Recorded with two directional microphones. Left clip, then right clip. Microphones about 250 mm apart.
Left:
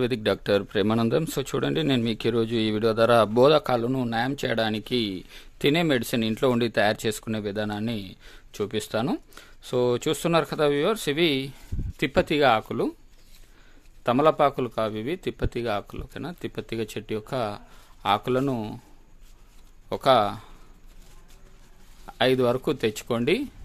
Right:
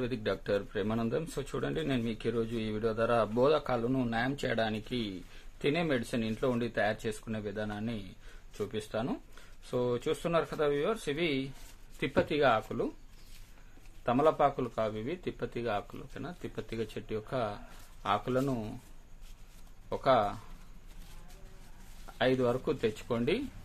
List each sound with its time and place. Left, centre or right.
0.0 s speech: left
14.0 s speech: left
19.9 s speech: left
22.0 s speech: left